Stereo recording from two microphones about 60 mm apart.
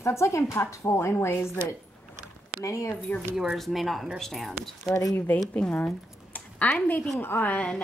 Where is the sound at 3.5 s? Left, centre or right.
Centre.